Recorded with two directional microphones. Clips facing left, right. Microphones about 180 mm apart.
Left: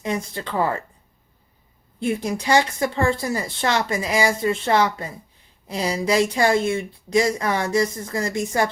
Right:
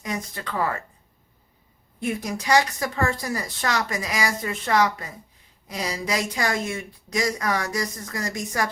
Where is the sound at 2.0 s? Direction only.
30° left (ahead or behind).